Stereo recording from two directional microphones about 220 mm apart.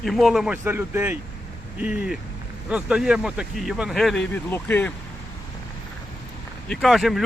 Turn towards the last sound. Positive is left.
turn(degrees=0)  # may be behind; listen again after turning